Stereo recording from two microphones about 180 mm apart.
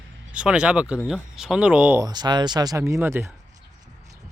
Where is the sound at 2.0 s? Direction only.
25° right (ahead or behind).